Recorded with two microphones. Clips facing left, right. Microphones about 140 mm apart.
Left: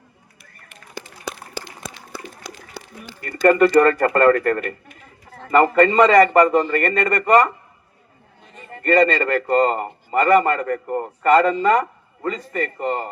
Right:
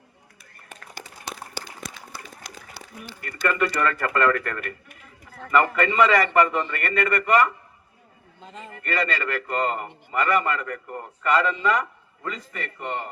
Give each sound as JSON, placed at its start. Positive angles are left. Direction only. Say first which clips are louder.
{"t": 3.2, "sound": "a man's voice", "louder": "left 10 dB", "side_deg": 40}
{"t": 8.8, "sound": "a man's voice", "louder": "left 10 dB", "side_deg": 45}